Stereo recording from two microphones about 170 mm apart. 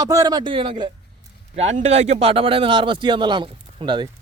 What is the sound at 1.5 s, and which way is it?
A man's voice, 40° right (ahead or behind).